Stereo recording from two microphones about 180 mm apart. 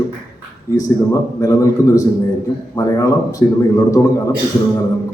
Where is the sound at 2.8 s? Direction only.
20° left (ahead or behind).